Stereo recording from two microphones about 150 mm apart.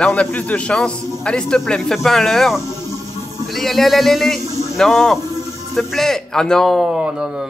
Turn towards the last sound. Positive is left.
turn(degrees=0)  # may be behind; listen again after turning